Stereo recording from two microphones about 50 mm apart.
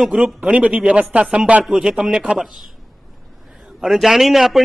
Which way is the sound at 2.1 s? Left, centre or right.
Centre.